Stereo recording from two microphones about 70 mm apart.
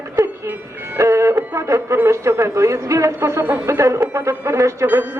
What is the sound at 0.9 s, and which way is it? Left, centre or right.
Music, right.